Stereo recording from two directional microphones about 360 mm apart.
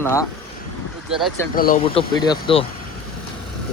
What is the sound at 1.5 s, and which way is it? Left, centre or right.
Speech, left.